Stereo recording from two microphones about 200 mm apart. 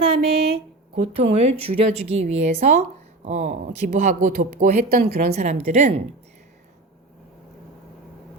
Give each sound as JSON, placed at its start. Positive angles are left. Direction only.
{"t": 0.0, "sound": "a sound", "side_deg": -30}
{"t": 1.1, "sound": "speech", "side_deg": -30}
{"t": 5.3, "sound": "speech", "side_deg": -35}